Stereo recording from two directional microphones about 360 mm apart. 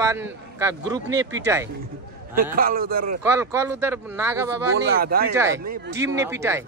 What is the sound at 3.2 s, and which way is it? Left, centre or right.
A man's voice, centre.